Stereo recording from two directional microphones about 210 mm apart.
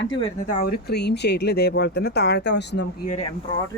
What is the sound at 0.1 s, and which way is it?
Speech, 25° left (ahead or behind).